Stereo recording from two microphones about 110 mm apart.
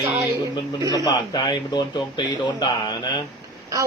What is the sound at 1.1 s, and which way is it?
Speech, 40° left (ahead or behind).